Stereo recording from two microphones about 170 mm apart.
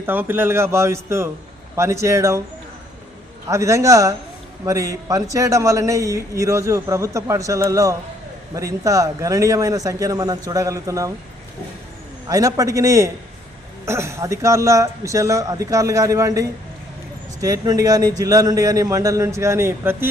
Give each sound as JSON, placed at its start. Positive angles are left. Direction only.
{"t": 0.0, "sound": "speech", "side_deg": -10}
{"t": 3.5, "sound": "a man's voice", "side_deg": -20}
{"t": 12.3, "sound": "a man's voice", "side_deg": -20}